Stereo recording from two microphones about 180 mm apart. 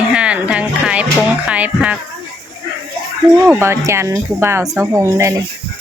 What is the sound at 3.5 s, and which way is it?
Speech, 15° right (ahead or behind).